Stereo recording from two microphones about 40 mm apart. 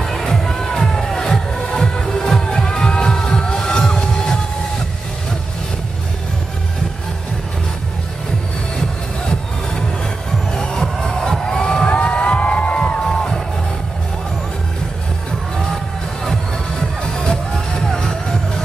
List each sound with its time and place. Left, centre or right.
0.0 s music: centre
8.7 s music: centre
17.0 s music: centre